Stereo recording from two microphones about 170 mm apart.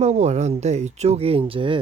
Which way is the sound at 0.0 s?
40° right (ahead or behind).